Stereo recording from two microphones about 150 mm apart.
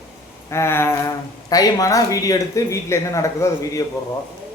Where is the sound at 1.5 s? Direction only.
25° left (ahead or behind).